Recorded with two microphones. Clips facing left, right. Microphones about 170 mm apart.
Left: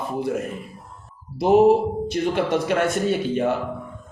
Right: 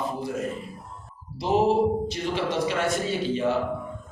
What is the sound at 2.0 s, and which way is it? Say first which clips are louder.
A man's voice: left 6 dB; 55° left (ahead or behind).